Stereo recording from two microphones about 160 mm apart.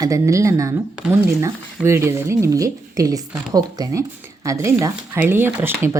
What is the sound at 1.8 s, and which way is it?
Speech, 15° right (ahead or behind).